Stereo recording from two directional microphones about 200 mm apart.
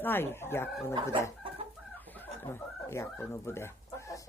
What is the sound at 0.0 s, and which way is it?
Speech, 10° left (ahead or behind).